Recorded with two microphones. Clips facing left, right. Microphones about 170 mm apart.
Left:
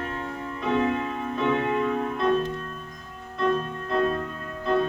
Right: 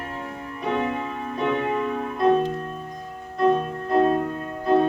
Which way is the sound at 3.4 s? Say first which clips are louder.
Right 5 dB; 25° right (ahead or behind).